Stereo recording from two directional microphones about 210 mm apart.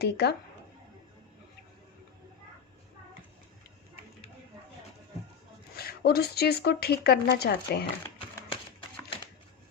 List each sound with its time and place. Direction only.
0.0 s speech: 50° left (ahead or behind)
5.7 s speech: 45° left (ahead or behind)